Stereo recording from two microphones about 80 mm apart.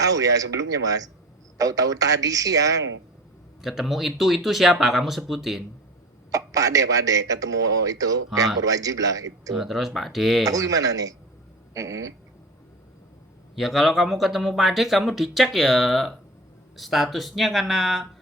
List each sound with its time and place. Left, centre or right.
0.0 s a man's voice: right
3.6 s speech: centre
6.3 s a man's voice: right
9.6 s speech: centre
10.4 s a man's voice: right
13.6 s speech: centre